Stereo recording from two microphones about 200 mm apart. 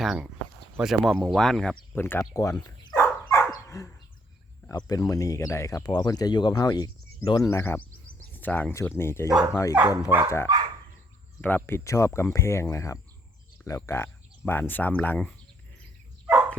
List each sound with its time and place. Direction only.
0.0 s speech: centre (ahead or behind)
2.0 s dog: 10° left (ahead or behind)
4.7 s speech: 15° left (ahead or behind)
9.7 s speech: 5° right (ahead or behind)
10.2 s speech: 15° left (ahead or behind)
16.2 s dog: 5° right (ahead or behind)